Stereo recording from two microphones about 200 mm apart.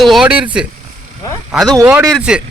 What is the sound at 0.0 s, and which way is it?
Speech, centre (ahead or behind).